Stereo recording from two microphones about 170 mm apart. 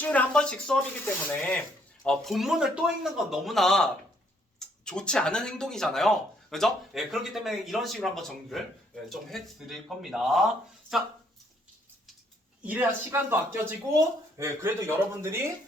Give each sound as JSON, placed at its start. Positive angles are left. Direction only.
{"t": 0.0, "sound": "speech", "side_deg": 10}
{"t": 4.9, "sound": "speech", "side_deg": 5}
{"t": 12.6, "sound": "speech", "side_deg": -10}